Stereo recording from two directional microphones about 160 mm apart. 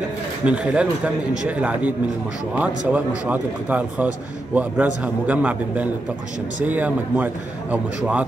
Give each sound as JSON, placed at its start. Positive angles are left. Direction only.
{"t": 0.5, "sound": "a man's voice", "side_deg": -5}